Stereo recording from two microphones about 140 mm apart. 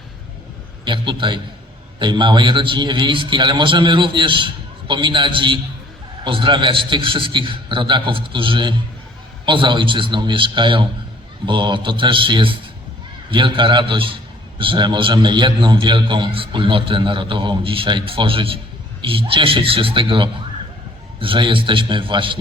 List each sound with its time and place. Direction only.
0.9 s a man's voice: 35° right (ahead or behind)